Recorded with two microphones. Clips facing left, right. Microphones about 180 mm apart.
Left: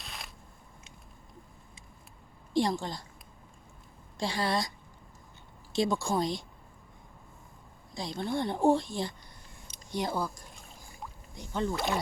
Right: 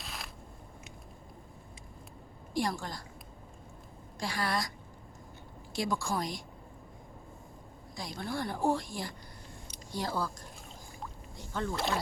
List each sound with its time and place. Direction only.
0.0 s a sound: centre (ahead or behind)
2.5 s a woman's voice: 25° left (ahead or behind)
4.2 s a woman's voice: 25° left (ahead or behind)
5.7 s a woman's voice: 25° left (ahead or behind)
7.9 s a woman's voice: 25° left (ahead or behind)
11.3 s a woman's voice: 20° left (ahead or behind)
11.7 s speech: centre (ahead or behind)